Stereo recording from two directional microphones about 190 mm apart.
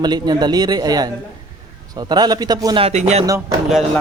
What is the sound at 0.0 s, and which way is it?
A man's voice, 20° right (ahead or behind).